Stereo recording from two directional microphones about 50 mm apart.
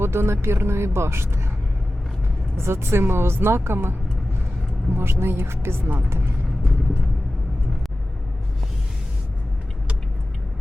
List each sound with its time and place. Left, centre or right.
0.0 s speech: right
2.6 s speech: right
4.9 s speech: right